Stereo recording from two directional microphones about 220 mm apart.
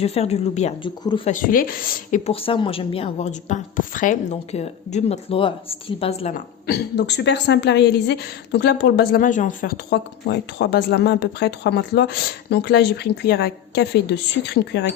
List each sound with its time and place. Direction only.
0.0 s speech: 30° left (ahead or behind)
1.3 s a woman's voice: 40° left (ahead or behind)
6.7 s a woman's voice: 50° left (ahead or behind)